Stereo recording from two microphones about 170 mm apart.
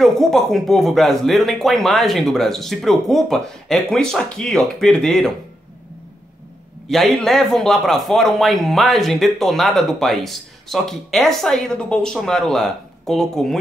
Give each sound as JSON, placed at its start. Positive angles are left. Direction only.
{"t": 0.0, "sound": "speech", "side_deg": 0}
{"t": 6.9, "sound": "speech", "side_deg": 0}